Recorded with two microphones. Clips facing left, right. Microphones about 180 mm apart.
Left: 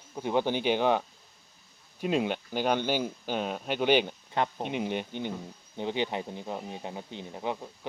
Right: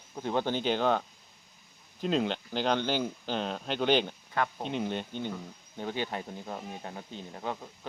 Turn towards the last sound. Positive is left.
turn(degrees=15)  # may be behind; listen again after turning